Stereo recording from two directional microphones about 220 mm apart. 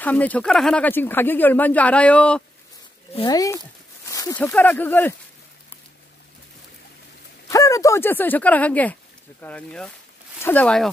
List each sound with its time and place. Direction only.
0.0 s speech: 5° left (ahead or behind)
3.2 s speech: 15° left (ahead or behind)
7.4 s speech: 15° left (ahead or behind)